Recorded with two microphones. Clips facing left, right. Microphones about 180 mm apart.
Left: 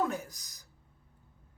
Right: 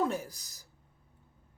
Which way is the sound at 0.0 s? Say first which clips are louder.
Right 1 dB; 30° right (ahead or behind).